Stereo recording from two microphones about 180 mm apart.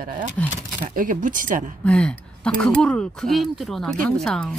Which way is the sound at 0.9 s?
50° right (ahead or behind).